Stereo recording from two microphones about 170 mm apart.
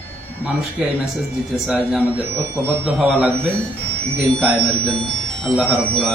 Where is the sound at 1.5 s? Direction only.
Centre (ahead or behind).